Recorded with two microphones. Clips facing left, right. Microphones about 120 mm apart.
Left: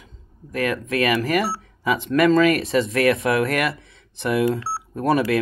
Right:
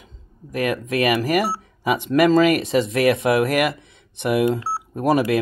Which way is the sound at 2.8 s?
25° right (ahead or behind).